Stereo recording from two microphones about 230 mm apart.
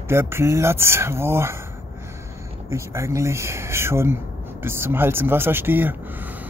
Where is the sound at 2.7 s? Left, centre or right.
Centre.